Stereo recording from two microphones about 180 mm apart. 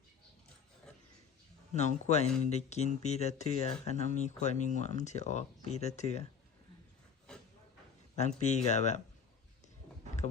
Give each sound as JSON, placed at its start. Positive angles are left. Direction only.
{"t": 1.7, "sound": "speech", "side_deg": 40}
{"t": 8.4, "sound": "speech", "side_deg": 40}